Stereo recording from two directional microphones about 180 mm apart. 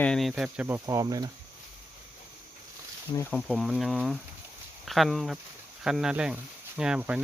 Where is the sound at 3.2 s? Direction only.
Centre (ahead or behind).